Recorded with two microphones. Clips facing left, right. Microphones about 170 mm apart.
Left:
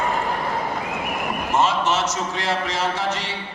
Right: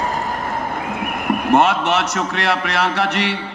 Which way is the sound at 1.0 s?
60° right (ahead or behind).